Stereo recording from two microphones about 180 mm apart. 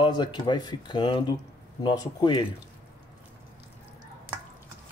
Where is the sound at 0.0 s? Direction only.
25° left (ahead or behind).